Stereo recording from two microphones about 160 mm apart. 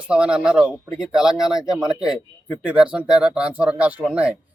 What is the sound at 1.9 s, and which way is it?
Speech, 25° left (ahead or behind).